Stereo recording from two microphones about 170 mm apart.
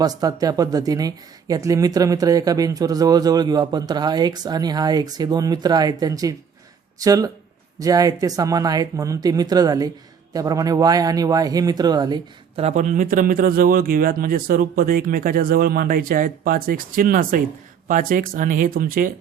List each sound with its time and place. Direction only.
0.0 s speech: 20° right (ahead or behind)
12.6 s speech: 45° right (ahead or behind)